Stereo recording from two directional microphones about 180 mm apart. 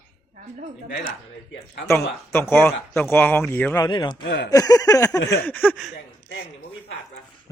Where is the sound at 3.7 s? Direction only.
25° left (ahead or behind).